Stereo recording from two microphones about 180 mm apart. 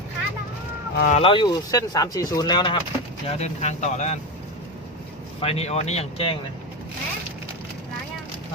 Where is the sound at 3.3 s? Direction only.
35° left (ahead or behind).